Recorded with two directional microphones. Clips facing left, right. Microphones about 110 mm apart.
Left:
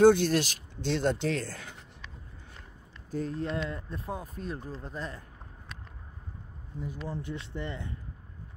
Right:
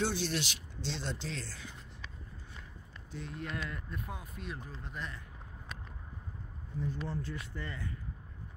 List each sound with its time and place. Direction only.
0.0 s speech: 50° left (ahead or behind)
3.1 s speech: 40° left (ahead or behind)
6.8 s speech: 15° left (ahead or behind)